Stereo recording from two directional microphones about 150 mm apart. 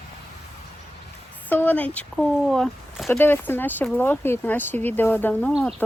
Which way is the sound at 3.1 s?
15° left (ahead or behind).